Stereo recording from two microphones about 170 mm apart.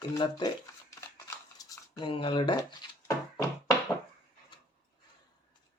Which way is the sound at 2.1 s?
30° left (ahead or behind).